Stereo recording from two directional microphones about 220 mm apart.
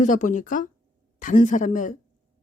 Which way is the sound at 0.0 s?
35° left (ahead or behind).